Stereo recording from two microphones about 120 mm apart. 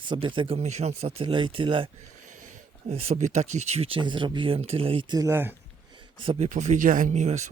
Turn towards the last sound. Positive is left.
turn(degrees=-75)  # may be behind; listen again after turning